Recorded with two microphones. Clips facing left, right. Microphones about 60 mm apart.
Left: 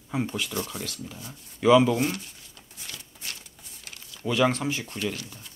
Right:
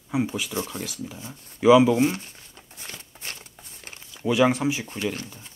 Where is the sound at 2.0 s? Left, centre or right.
Right; by 4.9 s centre.